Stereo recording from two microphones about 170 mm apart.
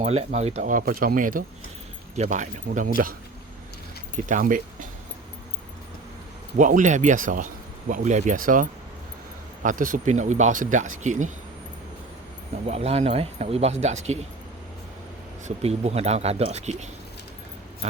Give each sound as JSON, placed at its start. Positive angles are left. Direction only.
{"t": 0.0, "sound": "speech", "side_deg": -40}
{"t": 4.3, "sound": "speech", "side_deg": -50}
{"t": 6.6, "sound": "speech", "side_deg": -50}
{"t": 12.6, "sound": "speech", "side_deg": -40}
{"t": 15.4, "sound": "speech", "side_deg": -40}